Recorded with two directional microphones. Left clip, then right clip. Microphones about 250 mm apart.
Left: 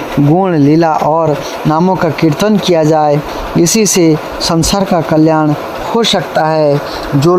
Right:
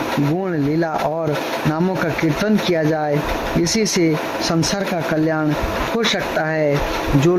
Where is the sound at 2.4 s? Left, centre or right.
Left.